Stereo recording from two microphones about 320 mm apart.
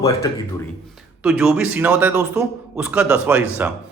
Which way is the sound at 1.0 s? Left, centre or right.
Centre.